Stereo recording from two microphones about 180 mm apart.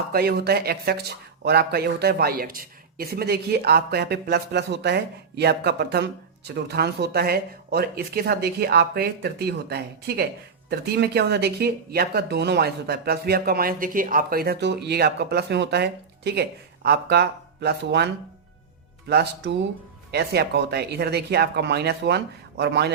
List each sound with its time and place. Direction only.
0.1 s speech: 60° right (ahead or behind)